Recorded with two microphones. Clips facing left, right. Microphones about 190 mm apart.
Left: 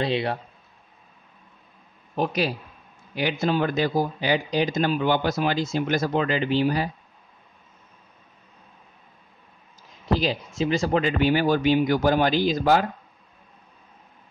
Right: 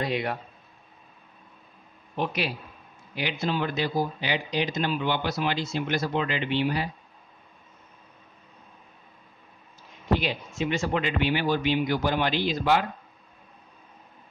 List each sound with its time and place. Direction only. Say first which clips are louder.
0.0 s a man's voice: left 3 dB; 30° left (ahead or behind)
2.1 s speech: left 4 dB; 40° left (ahead or behind)
10.1 s speech: left 3 dB; 35° left (ahead or behind)